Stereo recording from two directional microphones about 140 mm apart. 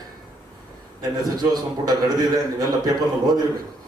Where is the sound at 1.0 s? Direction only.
30° right (ahead or behind).